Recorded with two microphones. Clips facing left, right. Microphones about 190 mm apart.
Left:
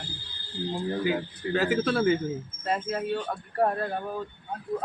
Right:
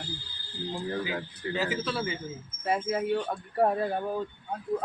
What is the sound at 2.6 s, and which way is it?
Speech, 10° right (ahead or behind).